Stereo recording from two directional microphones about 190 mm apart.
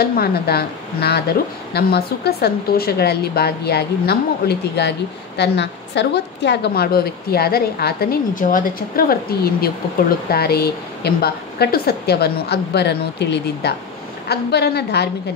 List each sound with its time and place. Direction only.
0.0 s a woman's voice: 55° left (ahead or behind)